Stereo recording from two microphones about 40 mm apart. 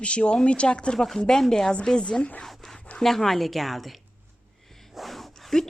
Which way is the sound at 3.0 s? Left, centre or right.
Centre.